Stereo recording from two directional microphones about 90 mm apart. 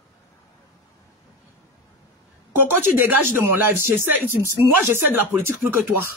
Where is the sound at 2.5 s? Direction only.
25° right (ahead or behind).